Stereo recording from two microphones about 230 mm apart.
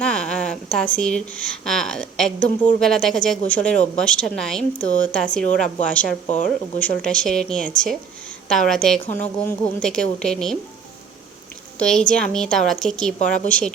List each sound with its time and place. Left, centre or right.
0.0 s speech: centre
9.0 s speech: left
9.4 s speech: centre
11.8 s speech: centre